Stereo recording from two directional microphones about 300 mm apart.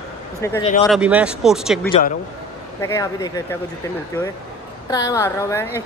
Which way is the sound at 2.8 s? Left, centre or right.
Centre.